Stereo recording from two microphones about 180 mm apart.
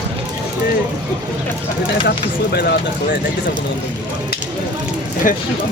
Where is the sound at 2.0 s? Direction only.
65° left (ahead or behind).